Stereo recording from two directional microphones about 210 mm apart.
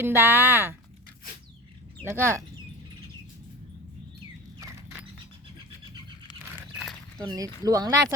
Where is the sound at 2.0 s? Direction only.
10° right (ahead or behind).